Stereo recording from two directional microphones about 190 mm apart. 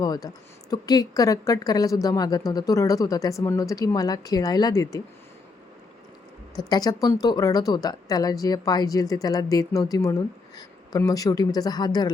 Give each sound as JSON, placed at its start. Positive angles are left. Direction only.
{"t": 0.0, "sound": "a woman's voice", "side_deg": 20}
{"t": 6.6, "sound": "a woman's voice", "side_deg": 20}